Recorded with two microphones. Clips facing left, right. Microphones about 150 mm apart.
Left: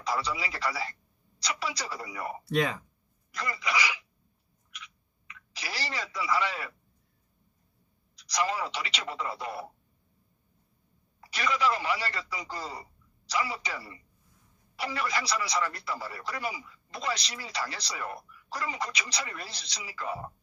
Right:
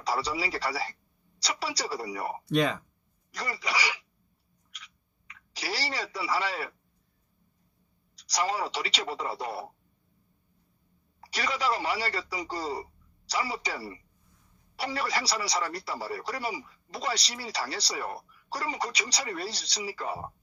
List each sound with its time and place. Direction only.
0.0 s speech: 35° right (ahead or behind)
4.7 s a sound: 35° right (ahead or behind)
8.2 s speech: 35° right (ahead or behind)
11.1 s speech: 35° right (ahead or behind)